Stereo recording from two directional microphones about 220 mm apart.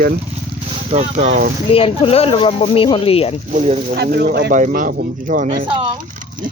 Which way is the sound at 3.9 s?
45° right (ahead or behind).